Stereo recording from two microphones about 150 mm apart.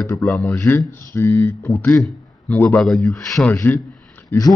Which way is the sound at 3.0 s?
20° left (ahead or behind).